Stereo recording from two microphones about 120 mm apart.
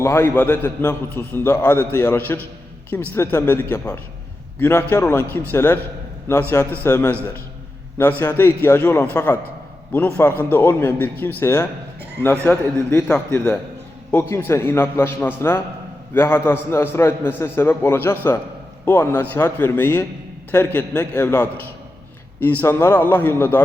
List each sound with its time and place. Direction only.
0.0 s a man's voice: 20° left (ahead or behind)